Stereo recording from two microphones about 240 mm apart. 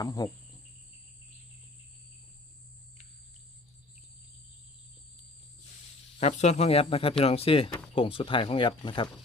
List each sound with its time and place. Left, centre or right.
0.0 s cricket: centre
6.1 s speech: left